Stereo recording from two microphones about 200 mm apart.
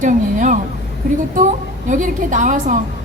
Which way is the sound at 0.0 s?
40° right (ahead or behind).